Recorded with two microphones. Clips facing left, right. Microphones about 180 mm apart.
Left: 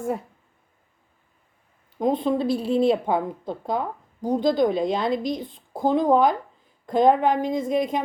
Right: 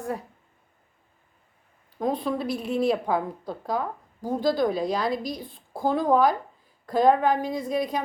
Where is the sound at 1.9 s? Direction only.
20° left (ahead or behind).